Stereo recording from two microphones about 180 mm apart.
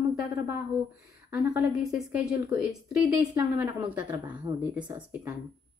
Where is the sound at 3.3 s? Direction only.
10° right (ahead or behind).